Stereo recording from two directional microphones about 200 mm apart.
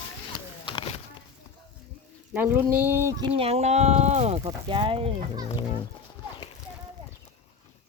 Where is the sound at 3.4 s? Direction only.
30° right (ahead or behind).